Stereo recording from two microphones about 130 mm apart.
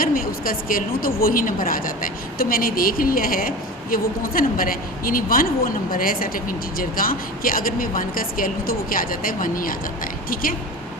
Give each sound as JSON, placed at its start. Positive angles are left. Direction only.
{"t": 0.0, "sound": "a woman's voice", "side_deg": 90}